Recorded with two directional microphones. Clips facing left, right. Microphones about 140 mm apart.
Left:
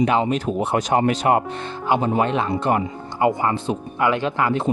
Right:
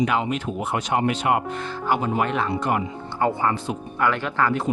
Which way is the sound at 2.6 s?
35° left (ahead or behind).